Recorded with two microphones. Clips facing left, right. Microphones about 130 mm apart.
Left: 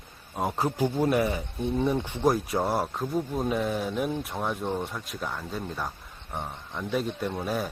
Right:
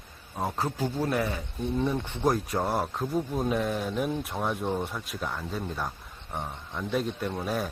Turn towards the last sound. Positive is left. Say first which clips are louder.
# left 1 dB
turn(degrees=0)  # may be behind; listen again after turning